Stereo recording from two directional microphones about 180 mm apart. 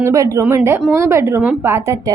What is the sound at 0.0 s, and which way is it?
A woman's voice, 15° right (ahead or behind).